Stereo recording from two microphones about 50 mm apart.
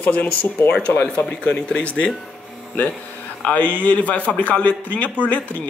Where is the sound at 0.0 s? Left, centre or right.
Left.